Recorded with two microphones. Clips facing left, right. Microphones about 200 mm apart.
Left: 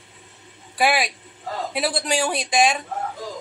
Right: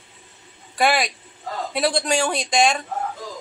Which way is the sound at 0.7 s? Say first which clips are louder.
Right 1 dB; 5° left (ahead or behind).